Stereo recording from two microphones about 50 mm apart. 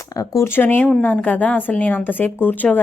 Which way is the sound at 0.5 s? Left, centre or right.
Left.